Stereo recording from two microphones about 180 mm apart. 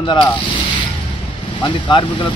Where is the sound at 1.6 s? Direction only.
25° left (ahead or behind).